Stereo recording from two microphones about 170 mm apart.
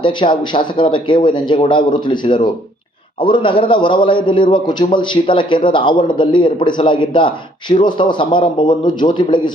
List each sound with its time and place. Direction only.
0.0 s a man's voice: 30° left (ahead or behind)